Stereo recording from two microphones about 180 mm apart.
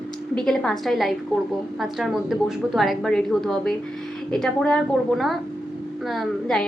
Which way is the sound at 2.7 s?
Centre (ahead or behind).